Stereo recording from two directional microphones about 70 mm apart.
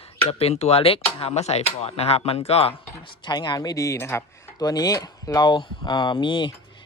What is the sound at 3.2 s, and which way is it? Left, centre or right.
Speech, left.